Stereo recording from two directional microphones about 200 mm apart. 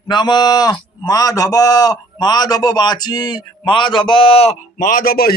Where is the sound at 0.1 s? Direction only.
20° left (ahead or behind).